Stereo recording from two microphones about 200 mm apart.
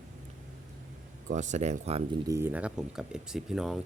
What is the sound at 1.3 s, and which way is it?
Speech, 35° right (ahead or behind).